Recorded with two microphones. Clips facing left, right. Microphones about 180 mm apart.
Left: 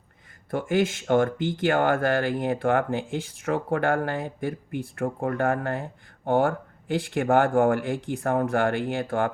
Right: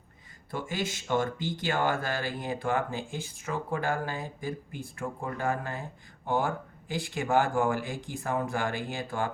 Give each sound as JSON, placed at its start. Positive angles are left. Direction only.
{"t": 0.5, "sound": "speech", "side_deg": 55}